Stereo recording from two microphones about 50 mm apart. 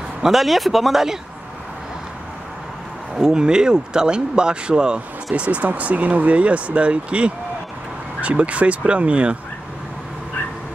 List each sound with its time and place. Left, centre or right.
0.2 s speech: centre
3.2 s speech: centre